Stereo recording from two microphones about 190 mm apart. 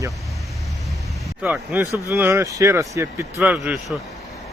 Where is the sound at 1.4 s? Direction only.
5° right (ahead or behind).